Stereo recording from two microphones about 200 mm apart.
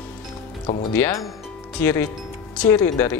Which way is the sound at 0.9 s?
10° left (ahead or behind).